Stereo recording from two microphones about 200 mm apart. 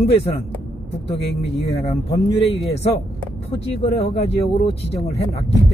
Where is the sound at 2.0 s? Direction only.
30° left (ahead or behind).